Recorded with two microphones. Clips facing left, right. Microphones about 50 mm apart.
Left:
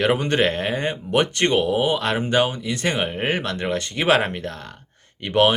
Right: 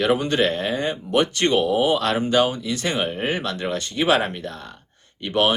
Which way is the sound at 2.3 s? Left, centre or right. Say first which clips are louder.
Even; left.